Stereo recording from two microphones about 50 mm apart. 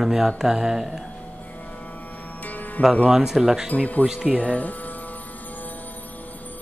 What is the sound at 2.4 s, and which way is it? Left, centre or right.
Music, left.